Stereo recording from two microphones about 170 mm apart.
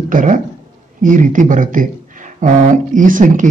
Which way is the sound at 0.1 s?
50° right (ahead or behind).